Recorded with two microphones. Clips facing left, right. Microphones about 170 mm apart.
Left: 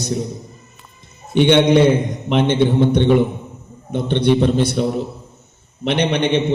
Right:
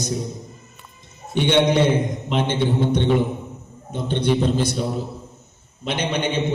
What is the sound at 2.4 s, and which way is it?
A man's voice, 60° left (ahead or behind).